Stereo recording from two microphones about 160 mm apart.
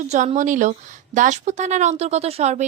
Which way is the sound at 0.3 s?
50° right (ahead or behind).